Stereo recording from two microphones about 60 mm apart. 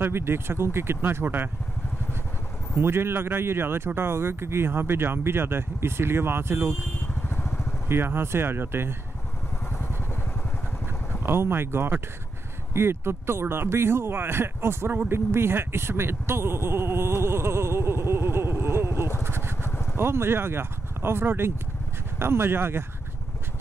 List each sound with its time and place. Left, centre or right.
0.0 s speech: right
2.8 s speech: right
7.9 s speech: right
9.7 s vehicle: left
11.2 s speech: right
19.2 s vehicle: right
19.7 s vehicle: left
20.0 s speech: right